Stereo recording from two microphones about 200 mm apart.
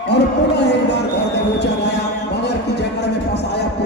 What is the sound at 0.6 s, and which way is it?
Music, 60° left (ahead or behind).